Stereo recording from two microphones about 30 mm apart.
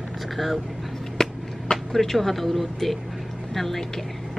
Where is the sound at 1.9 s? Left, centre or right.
Centre.